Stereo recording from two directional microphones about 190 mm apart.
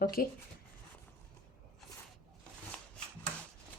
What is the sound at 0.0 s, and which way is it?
Speech, 50° left (ahead or behind).